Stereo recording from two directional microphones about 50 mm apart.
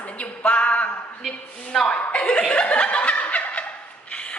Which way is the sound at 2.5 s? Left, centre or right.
Left.